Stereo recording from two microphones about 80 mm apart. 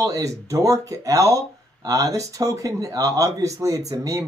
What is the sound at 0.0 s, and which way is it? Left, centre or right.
Speech, right.